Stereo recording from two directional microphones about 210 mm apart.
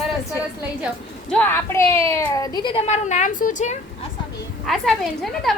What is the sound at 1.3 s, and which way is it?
A woman's voice, 10° left (ahead or behind).